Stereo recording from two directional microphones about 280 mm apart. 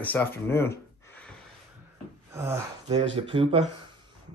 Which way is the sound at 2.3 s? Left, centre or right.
Centre.